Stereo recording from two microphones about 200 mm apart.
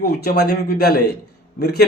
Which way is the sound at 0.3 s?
55° left (ahead or behind).